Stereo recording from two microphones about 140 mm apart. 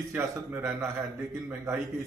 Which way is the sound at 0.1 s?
15° right (ahead or behind).